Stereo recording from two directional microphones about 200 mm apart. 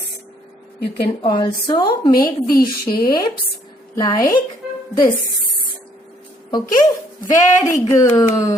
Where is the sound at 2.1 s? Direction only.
45° left (ahead or behind).